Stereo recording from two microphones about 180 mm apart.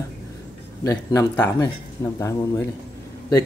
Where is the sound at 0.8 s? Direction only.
15° left (ahead or behind).